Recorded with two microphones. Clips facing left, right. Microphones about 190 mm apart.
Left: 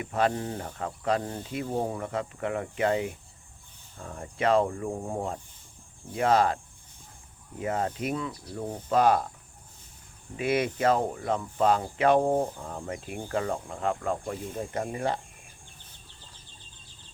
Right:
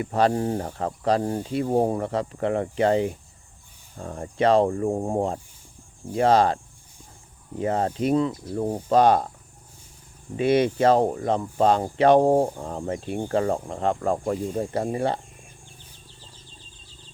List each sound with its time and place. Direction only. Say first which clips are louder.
0.0 s speech: right 5 dB; 35° right (ahead or behind)
7.6 s speech: right 6 dB; 30° right (ahead or behind)
10.3 s speech: right 7 dB; 30° right (ahead or behind)